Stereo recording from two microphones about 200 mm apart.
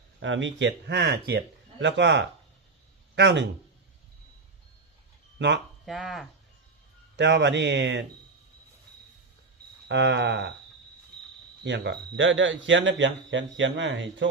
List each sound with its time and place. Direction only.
0.2 s speech: 70° right (ahead or behind)
5.4 s speech: 60° right (ahead or behind)
5.8 s speech: centre (ahead or behind)
7.2 s speech: 60° right (ahead or behind)
9.9 s speech: 60° right (ahead or behind)
11.6 s speech: 60° right (ahead or behind)